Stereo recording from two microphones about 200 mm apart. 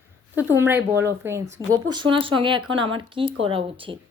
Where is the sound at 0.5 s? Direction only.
10° right (ahead or behind).